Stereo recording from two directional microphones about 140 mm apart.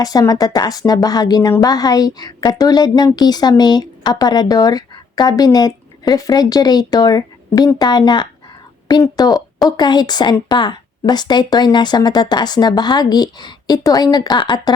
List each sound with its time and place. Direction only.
0.0 s speech: 25° left (ahead or behind)